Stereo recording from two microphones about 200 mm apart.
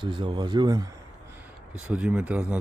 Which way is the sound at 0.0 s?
25° right (ahead or behind).